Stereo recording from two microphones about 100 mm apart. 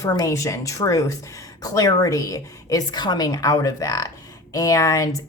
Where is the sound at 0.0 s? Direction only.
35° left (ahead or behind).